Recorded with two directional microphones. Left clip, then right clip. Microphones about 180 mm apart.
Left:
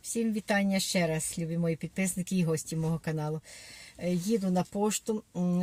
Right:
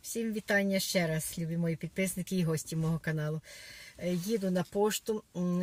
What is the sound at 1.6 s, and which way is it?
Speech, 15° left (ahead or behind).